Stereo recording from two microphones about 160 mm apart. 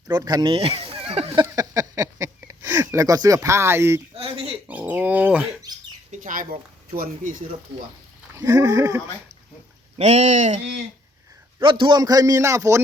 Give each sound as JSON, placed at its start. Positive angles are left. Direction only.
{"t": 0.1, "sound": "speech", "side_deg": -25}
{"t": 1.4, "sound": "a sound", "side_deg": -20}
{"t": 4.1, "sound": "a sound", "side_deg": -35}
{"t": 4.7, "sound": "dog", "side_deg": -10}
{"t": 6.1, "sound": "speech", "side_deg": -55}
{"t": 8.3, "sound": "speech", "side_deg": -20}
{"t": 10.0, "sound": "speech", "side_deg": -45}
{"t": 11.6, "sound": "speech", "side_deg": -30}